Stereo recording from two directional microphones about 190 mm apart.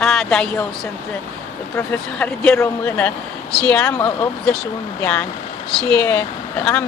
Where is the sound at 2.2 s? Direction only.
10° left (ahead or behind).